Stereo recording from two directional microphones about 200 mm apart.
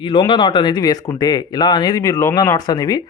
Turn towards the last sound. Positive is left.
turn(degrees=20)  # may be behind; listen again after turning